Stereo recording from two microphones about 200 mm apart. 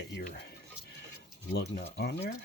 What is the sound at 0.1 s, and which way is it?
Speech, 50° left (ahead or behind).